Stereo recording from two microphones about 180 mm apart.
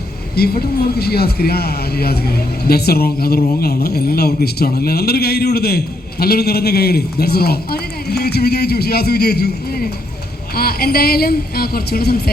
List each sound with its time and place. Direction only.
0.3 s a man's voice: 60° left (ahead or behind)